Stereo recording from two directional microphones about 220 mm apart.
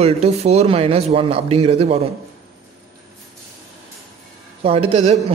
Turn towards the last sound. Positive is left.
turn(degrees=-30)  # may be behind; listen again after turning